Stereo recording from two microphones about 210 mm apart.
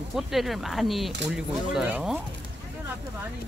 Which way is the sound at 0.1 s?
Centre (ahead or behind).